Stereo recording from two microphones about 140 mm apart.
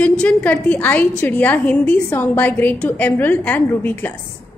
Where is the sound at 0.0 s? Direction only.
10° left (ahead or behind).